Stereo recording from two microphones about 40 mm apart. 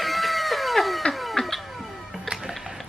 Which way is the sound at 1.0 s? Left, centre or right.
Centre.